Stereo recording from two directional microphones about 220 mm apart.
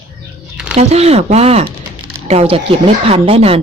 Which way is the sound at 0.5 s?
5° right (ahead or behind).